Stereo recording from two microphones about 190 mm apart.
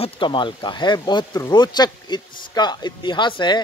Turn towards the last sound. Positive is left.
turn(degrees=25)  # may be behind; listen again after turning